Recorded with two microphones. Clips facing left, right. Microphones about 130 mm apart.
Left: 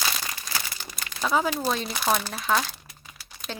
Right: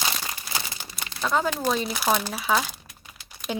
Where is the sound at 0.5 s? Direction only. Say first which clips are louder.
Right 1 dB; 20° right (ahead or behind).